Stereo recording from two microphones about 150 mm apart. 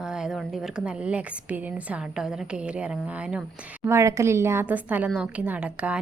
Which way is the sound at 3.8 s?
20° right (ahead or behind).